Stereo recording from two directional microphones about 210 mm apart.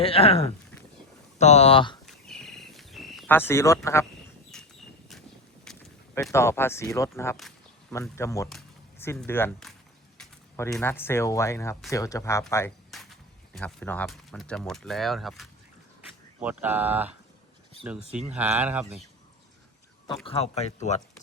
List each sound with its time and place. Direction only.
0.0 s speech: 25° left (ahead or behind)
2.0 s a sound: centre (ahead or behind)
3.3 s speech: 10° left (ahead or behind)
4.5 s a sound: centre (ahead or behind)
6.3 s speech: 10° left (ahead or behind)
7.3 s a sound: centre (ahead or behind)
8.1 s speech: 15° left (ahead or behind)
12.9 s speech: centre (ahead or behind)
20.2 s speech: 30° left (ahead or behind)